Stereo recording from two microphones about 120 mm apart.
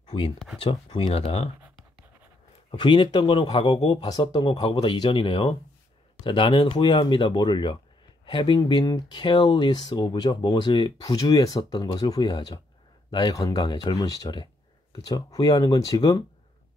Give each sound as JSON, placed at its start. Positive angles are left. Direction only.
{"t": 0.1, "sound": "speech", "side_deg": 50}
{"t": 2.7, "sound": "speech", "side_deg": 45}